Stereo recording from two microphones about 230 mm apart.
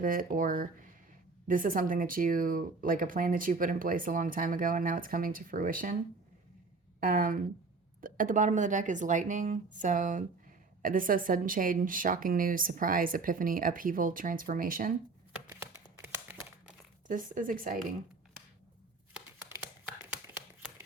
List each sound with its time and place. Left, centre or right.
0.0 s speech: right
7.1 s speech: right
17.1 s speech: right
20.2 s a sound: centre